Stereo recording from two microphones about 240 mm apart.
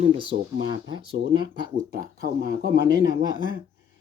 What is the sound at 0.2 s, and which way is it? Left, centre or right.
Speech, centre.